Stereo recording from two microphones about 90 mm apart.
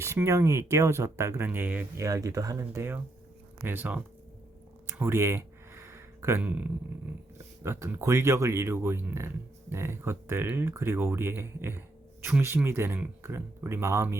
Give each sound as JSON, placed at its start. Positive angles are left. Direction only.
{"t": 0.0, "sound": "speech", "side_deg": -30}
{"t": 1.5, "sound": "speech", "side_deg": -20}
{"t": 2.0, "sound": "speech", "side_deg": -35}
{"t": 3.6, "sound": "speech", "side_deg": -20}
{"t": 4.9, "sound": "a sound", "side_deg": -30}
{"t": 6.4, "sound": "a sound", "side_deg": -15}
{"t": 7.3, "sound": "speech", "side_deg": -30}